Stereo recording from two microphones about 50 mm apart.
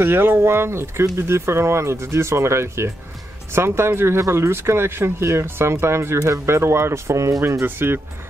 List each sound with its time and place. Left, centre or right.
0.0 s speech: right
7.6 s speech: right